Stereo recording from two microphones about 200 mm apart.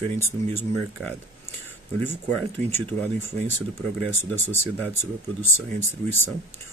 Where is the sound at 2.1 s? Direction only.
10° left (ahead or behind).